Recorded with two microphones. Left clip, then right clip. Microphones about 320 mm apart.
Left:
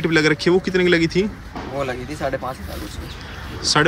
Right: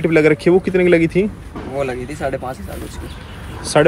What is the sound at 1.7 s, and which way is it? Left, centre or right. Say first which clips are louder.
Speech: right 3 dB; centre.